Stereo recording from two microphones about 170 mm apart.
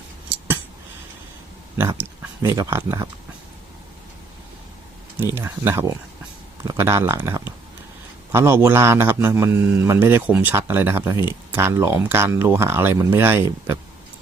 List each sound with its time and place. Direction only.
1.8 s speech: 15° right (ahead or behind)
5.2 s a man's voice: 15° right (ahead or behind)